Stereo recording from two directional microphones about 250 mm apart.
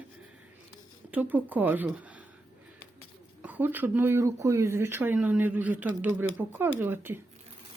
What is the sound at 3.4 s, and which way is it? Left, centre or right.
Speech, centre.